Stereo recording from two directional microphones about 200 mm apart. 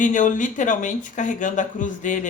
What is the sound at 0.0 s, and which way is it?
Speech, 40° left (ahead or behind).